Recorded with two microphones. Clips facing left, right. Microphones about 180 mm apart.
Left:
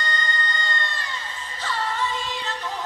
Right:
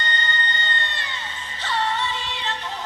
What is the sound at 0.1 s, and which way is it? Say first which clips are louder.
Music: even; 40° left (ahead or behind).